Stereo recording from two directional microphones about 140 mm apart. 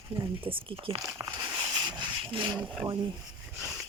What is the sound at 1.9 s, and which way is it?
Rub, 35° right (ahead or behind).